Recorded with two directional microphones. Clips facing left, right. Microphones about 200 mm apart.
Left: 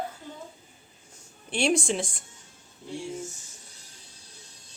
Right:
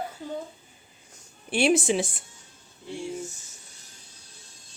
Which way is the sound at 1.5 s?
5° right (ahead or behind).